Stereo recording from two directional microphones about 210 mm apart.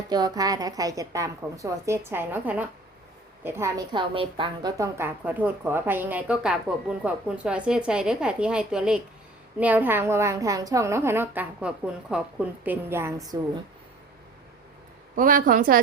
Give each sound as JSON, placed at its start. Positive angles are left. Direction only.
{"t": 0.1, "sound": "a woman's voice", "side_deg": -20}
{"t": 15.1, "sound": "a woman's voice", "side_deg": -40}